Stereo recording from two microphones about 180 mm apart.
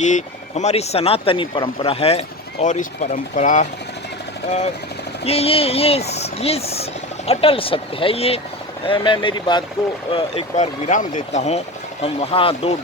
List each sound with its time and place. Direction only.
0.0 s speech: 40° left (ahead or behind)
5.2 s speech: 35° left (ahead or behind)